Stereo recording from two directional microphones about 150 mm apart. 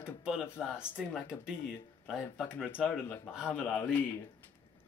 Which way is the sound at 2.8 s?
Centre (ahead or behind).